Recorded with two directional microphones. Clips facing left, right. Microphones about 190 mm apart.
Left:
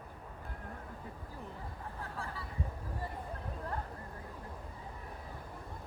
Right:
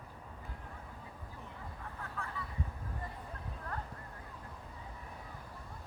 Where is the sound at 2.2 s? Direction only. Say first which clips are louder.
Left 1 dB; 30° left (ahead or behind).